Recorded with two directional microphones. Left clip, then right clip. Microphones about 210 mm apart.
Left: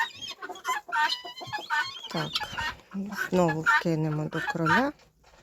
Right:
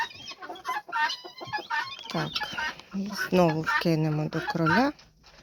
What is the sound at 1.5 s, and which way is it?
Music, 45° left (ahead or behind).